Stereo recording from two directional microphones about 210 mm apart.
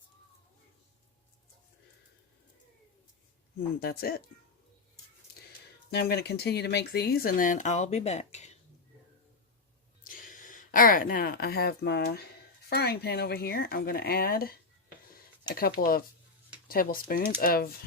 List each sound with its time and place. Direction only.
3.8 s speech: 45° left (ahead or behind)
5.9 s speech: 50° left (ahead or behind); by 8.5 s 35° left (ahead or behind)
10.0 s speech: 40° left (ahead or behind)